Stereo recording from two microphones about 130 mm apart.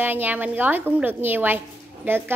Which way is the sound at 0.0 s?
15° right (ahead or behind).